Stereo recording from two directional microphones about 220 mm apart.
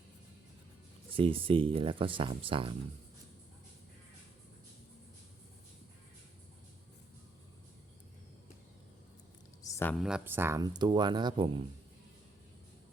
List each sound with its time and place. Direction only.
1.1 s speech: 25° right (ahead or behind)
9.6 s a sound: 10° left (ahead or behind)
10.0 s speech: 5° right (ahead or behind); by 11.6 s 20° right (ahead or behind)